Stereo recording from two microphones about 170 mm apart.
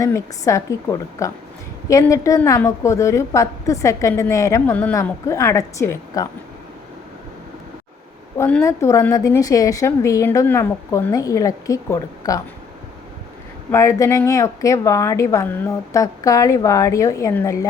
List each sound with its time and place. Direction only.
0.0 s a woman's voice: 20° left (ahead or behind)
8.4 s a woman's voice: 10° left (ahead or behind)
13.7 s a woman's voice: 15° left (ahead or behind)